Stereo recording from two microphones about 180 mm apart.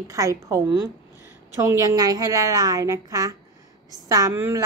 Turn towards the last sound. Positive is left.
turn(degrees=-15)  # may be behind; listen again after turning